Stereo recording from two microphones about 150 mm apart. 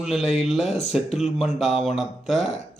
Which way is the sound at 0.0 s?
Centre (ahead or behind).